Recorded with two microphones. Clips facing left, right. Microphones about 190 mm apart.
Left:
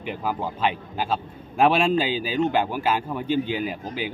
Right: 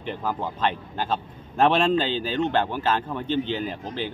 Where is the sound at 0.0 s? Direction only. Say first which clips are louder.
Left 1 dB; 10° left (ahead or behind).